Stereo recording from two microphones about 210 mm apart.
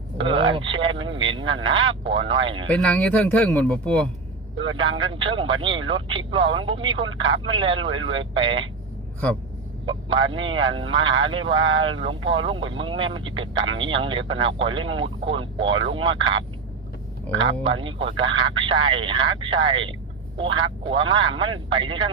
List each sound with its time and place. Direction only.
0.2 s speech: 25° right (ahead or behind)
2.6 s speech: 5° left (ahead or behind)
4.6 s speech: 25° right (ahead or behind)
9.8 s speech: 25° right (ahead or behind)